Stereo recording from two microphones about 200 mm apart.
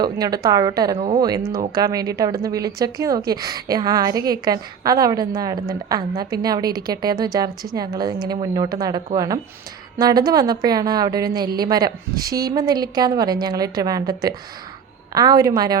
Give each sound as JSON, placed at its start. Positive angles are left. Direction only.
{"t": 0.0, "sound": "a woman's voice", "side_deg": -20}